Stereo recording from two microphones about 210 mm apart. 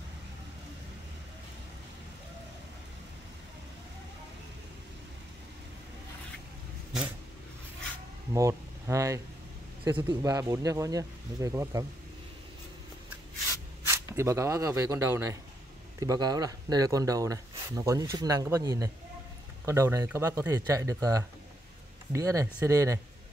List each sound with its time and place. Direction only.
8.3 s speech: 15° right (ahead or behind)
13.8 s speech: 15° right (ahead or behind)